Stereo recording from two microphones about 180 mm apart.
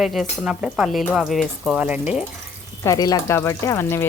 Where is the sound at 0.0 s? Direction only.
Centre (ahead or behind).